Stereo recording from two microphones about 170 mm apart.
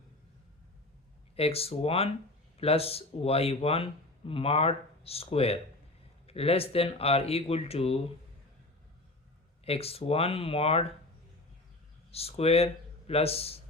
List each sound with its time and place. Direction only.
1.4 s speech: 35° left (ahead or behind)
9.6 s speech: 35° left (ahead or behind)
12.1 s speech: 35° left (ahead or behind)